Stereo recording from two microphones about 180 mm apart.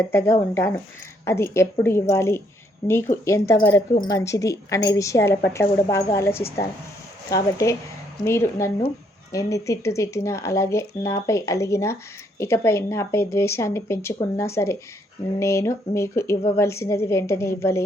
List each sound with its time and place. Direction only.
0.1 s speech: 15° left (ahead or behind)